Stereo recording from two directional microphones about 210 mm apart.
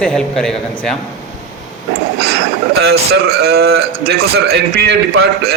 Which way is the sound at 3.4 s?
50° right (ahead or behind).